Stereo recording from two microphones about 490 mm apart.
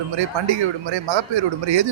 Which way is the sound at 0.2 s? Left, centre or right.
Right.